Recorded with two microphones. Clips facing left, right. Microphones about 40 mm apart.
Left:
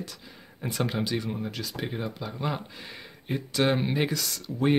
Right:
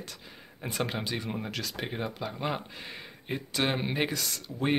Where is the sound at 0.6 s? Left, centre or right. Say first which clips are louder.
Left 3 dB; right.